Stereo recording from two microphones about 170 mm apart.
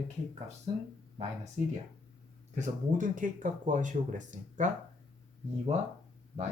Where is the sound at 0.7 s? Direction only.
30° right (ahead or behind).